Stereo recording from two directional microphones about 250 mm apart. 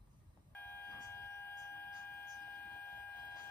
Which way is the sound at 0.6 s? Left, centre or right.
Centre.